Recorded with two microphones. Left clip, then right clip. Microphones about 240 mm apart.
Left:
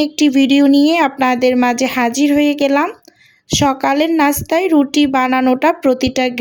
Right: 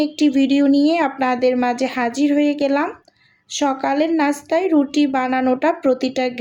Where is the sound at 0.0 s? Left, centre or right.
Left.